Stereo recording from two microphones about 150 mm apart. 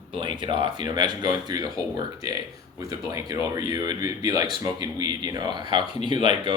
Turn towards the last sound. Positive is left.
turn(degrees=-35)  # may be behind; listen again after turning